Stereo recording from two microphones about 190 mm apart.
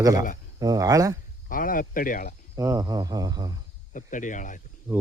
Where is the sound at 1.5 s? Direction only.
45° left (ahead or behind).